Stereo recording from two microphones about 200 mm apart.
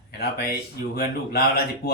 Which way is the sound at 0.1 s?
50° left (ahead or behind).